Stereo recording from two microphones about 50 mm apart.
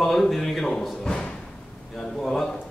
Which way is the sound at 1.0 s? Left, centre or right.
Centre.